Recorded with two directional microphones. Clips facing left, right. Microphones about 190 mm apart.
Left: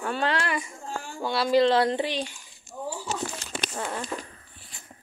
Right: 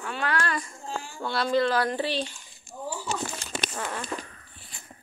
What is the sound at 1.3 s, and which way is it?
Speech, 5° left (ahead or behind).